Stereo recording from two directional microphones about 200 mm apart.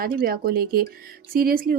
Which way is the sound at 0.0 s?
45° right (ahead or behind).